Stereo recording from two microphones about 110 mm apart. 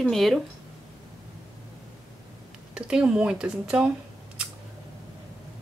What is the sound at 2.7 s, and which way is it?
Speech, 5° right (ahead or behind).